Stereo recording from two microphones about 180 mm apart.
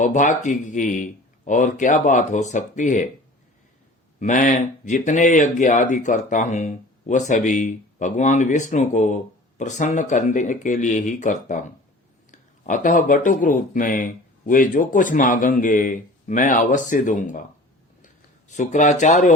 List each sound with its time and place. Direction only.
0.0 s speech: 45° left (ahead or behind)
4.2 s speech: 45° left (ahead or behind)